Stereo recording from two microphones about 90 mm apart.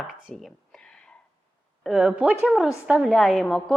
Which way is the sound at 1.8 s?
5° right (ahead or behind).